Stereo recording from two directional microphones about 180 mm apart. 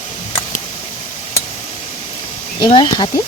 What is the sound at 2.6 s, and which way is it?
Speech, 25° left (ahead or behind).